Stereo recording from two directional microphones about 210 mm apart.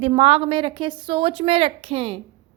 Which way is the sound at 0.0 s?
25° right (ahead or behind).